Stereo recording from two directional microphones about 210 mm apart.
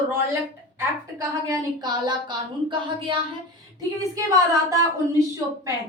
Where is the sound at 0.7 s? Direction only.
15° right (ahead or behind).